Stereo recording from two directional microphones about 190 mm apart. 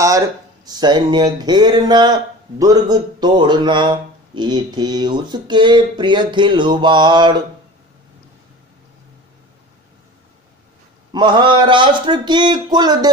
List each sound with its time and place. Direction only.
0.0 s speech: 15° right (ahead or behind)
11.1 s speech: 25° right (ahead or behind)